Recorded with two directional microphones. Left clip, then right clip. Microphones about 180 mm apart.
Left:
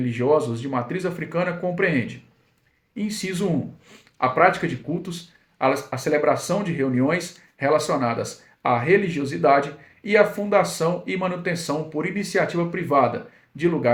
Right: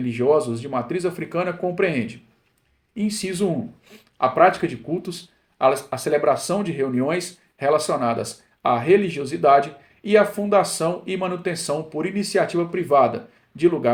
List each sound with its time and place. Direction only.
0.2 s speech: 35° right (ahead or behind)
2.9 s speech: 40° right (ahead or behind)